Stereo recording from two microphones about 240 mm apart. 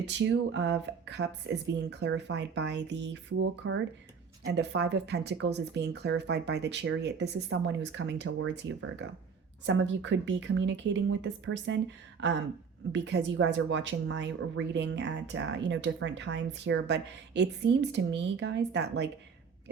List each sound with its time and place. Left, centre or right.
0.0 s speech: right
12.2 s a sound: right
12.9 s speech: right